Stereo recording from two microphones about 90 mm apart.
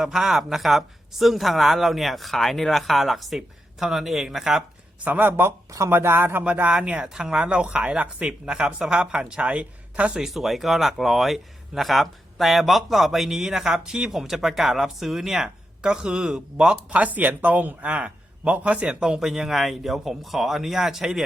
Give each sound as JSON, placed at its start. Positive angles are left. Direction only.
{"t": 0.0, "sound": "speech", "side_deg": -5}
{"t": 5.0, "sound": "speech", "side_deg": -20}
{"t": 10.2, "sound": "speech", "side_deg": 0}